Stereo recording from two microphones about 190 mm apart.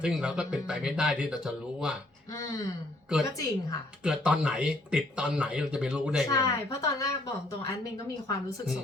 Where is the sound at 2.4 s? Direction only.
15° left (ahead or behind).